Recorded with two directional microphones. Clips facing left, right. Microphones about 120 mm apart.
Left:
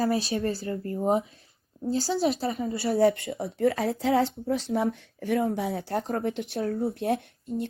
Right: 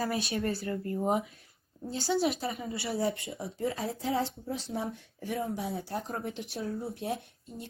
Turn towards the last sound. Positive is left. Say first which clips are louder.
# left 12 dB
turn(degrees=60)  # may be behind; listen again after turning